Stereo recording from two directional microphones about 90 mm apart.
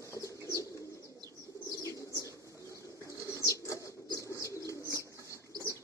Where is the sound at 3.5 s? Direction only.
35° left (ahead or behind).